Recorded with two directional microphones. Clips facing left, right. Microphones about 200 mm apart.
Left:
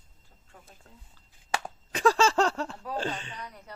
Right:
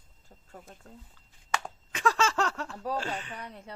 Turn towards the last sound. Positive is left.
turn(degrees=-30)  # may be behind; listen again after turning